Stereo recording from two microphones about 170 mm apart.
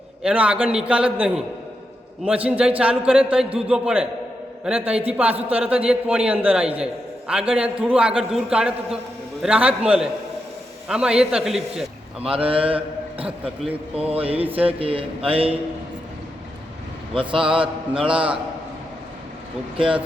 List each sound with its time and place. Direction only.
0.2 s a man's voice: 5° right (ahead or behind)
12.4 s a man's voice: 30° right (ahead or behind)
17.5 s speech: 30° right (ahead or behind)
18.1 s a man's voice: 5° right (ahead or behind)